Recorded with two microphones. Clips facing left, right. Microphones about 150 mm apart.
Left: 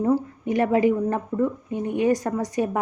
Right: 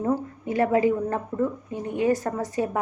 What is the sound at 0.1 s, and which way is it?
Speech, 20° left (ahead or behind).